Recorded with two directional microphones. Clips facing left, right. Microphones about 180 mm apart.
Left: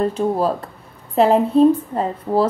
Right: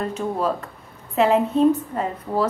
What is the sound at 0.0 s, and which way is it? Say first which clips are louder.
A woman's voice: left 5 dB; 35° left (ahead or behind).